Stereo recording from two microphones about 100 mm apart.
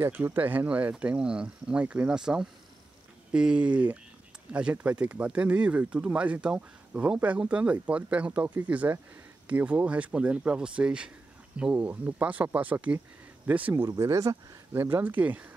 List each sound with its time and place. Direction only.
0.0 s speech: 20° right (ahead or behind)
13.8 s speech: 30° right (ahead or behind); by 15.4 s 15° right (ahead or behind)